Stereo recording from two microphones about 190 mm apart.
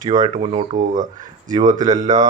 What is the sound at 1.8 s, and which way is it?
Speech, 20° right (ahead or behind).